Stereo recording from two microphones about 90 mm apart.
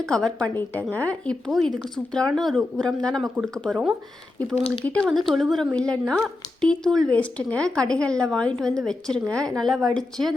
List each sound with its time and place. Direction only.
0.0 s speech: 5° left (ahead or behind)
0.5 s speech: 20° left (ahead or behind)
1.5 s a woman's voice: centre (ahead or behind)
4.8 s speech: 15° left (ahead or behind)
5.3 s a woman's voice: centre (ahead or behind)
5.7 s a woman's voice: 10° left (ahead or behind)